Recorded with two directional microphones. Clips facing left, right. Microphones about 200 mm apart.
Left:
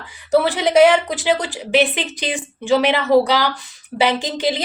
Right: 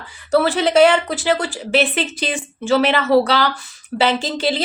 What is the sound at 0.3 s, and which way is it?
A woman's voice, 20° left (ahead or behind).